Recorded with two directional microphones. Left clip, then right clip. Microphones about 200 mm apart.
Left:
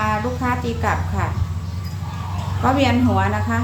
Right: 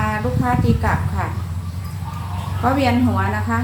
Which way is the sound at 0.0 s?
20° left (ahead or behind).